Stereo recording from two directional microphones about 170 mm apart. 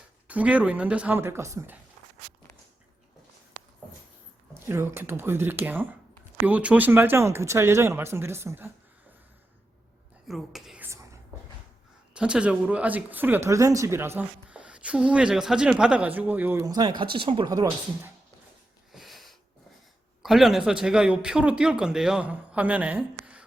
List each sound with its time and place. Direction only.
0.3 s speech: 10° right (ahead or behind)
4.6 s speech: 15° right (ahead or behind)
10.2 s whispering: centre (ahead or behind)
12.1 s speech: 5° right (ahead or behind); by 18.1 s 20° right (ahead or behind)
18.9 s a sound: centre (ahead or behind)
20.2 s a man's voice: centre (ahead or behind)